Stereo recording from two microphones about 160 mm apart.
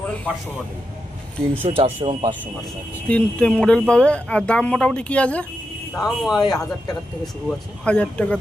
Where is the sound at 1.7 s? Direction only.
35° right (ahead or behind).